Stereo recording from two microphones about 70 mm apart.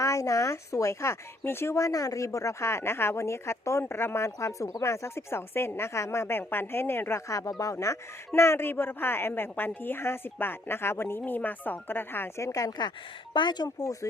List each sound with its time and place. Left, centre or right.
0.0 s speech: left
1.8 s speech: left
7.3 s speech: left
8.3 s speech: left
12.4 s speech: left
13.4 s speech: left